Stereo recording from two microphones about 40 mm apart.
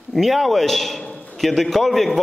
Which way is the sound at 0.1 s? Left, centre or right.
Centre.